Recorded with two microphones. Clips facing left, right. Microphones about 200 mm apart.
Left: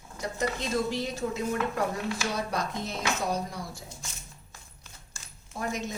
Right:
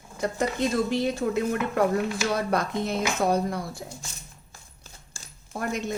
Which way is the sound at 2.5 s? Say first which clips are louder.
Right 6 dB; 55° right (ahead or behind).